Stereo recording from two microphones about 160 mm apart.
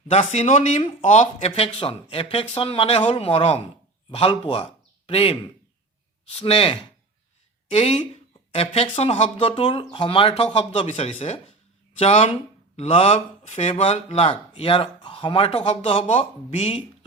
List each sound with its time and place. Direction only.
0.1 s a man's voice: 45° left (ahead or behind)